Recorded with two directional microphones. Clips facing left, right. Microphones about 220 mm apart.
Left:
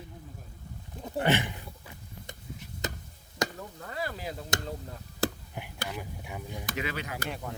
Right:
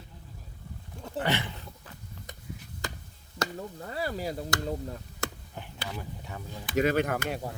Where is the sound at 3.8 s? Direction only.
35° right (ahead or behind).